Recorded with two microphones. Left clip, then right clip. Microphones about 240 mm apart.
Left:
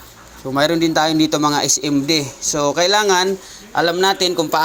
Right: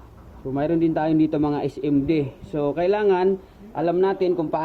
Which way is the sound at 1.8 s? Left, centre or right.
Left.